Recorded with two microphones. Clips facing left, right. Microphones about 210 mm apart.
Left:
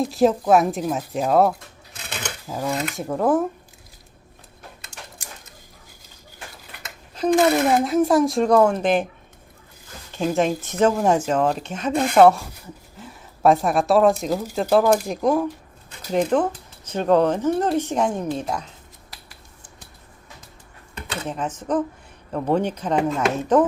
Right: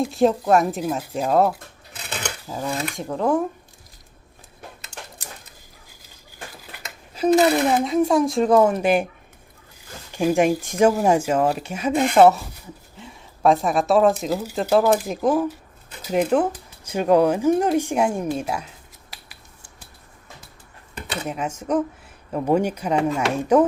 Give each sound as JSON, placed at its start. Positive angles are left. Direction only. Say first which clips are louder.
{"t": 0.0, "sound": "speech", "louder": "even", "side_deg": 0}
{"t": 7.1, "sound": "dishes", "louder": "right 1 dB", "side_deg": -5}
{"t": 7.5, "sound": "speech", "louder": "left 1 dB", "side_deg": 0}
{"t": 10.1, "sound": "speech", "louder": "right 3 dB", "side_deg": -10}
{"t": 21.2, "sound": "speech", "louder": "even", "side_deg": -10}